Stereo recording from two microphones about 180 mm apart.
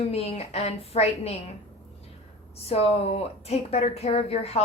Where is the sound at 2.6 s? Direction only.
35° left (ahead or behind).